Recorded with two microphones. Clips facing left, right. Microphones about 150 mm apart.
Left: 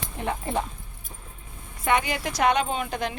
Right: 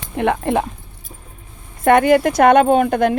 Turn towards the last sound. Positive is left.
turn(degrees=-55)  # may be behind; listen again after turning